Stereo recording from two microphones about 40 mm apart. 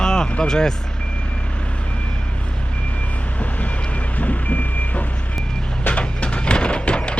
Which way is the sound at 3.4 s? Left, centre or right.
Left.